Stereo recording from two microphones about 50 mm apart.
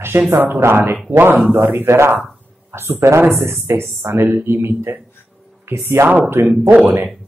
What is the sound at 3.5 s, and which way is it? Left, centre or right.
Speech, right.